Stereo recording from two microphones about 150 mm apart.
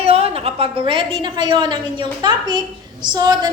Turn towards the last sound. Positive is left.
turn(degrees=-25)  # may be behind; listen again after turning